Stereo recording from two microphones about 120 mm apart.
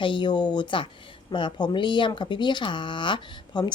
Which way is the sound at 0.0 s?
40° left (ahead or behind).